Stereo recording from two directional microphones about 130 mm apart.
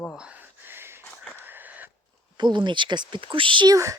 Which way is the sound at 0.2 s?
10° right (ahead or behind).